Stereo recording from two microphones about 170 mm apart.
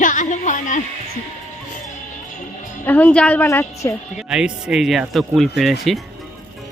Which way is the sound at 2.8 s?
10° left (ahead or behind).